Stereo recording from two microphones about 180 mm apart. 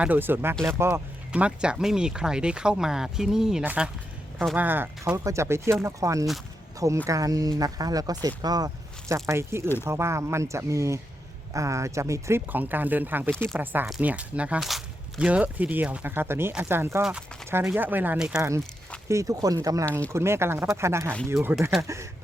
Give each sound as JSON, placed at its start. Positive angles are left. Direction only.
{"t": 0.0, "sound": "speech", "side_deg": -10}
{"t": 13.3, "sound": "speech", "side_deg": 5}
{"t": 13.6, "sound": "speech", "side_deg": -10}